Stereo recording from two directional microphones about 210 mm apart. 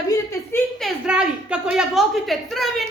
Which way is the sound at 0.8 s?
5° right (ahead or behind).